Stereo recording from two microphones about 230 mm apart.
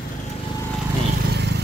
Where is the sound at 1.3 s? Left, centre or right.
Right.